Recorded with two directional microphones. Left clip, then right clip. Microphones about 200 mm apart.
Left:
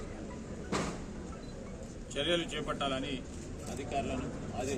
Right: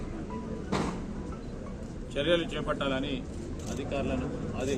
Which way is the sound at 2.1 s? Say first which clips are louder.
Right 5 dB; 20° left (ahead or behind).